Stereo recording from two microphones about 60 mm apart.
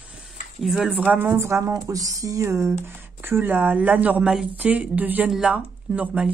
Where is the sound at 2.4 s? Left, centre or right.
Right.